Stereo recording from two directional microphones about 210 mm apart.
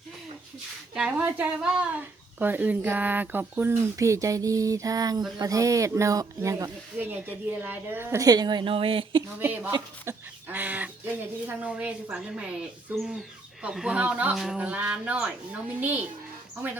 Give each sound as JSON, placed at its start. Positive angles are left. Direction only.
{"t": 0.9, "sound": "a child's voice", "side_deg": -5}
{"t": 9.4, "sound": "a child's voice", "side_deg": -10}